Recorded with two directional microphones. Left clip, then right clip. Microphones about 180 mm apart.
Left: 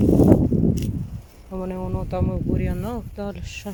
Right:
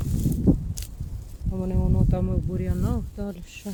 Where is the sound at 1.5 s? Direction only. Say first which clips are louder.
Left 2 dB; 5° right (ahead or behind).